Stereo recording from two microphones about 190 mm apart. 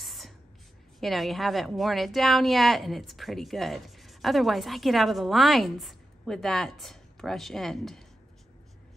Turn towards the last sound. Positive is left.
turn(degrees=0)  # may be behind; listen again after turning